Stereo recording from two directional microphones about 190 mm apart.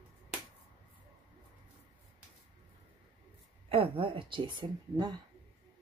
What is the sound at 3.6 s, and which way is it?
Speech, 30° right (ahead or behind).